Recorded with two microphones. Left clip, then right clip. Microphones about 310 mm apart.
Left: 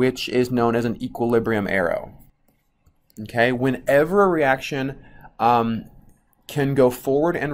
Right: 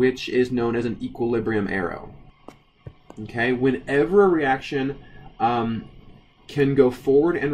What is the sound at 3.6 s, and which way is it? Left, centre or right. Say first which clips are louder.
Speech: left 3 dB; centre.